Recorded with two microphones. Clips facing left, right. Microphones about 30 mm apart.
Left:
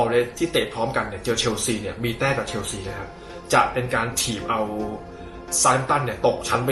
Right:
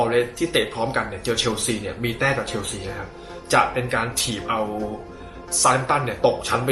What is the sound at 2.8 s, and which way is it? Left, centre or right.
Speech, centre.